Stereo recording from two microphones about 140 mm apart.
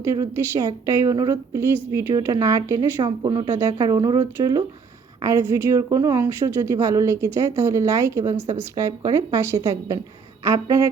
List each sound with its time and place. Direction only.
0.0 s speech: 20° right (ahead or behind)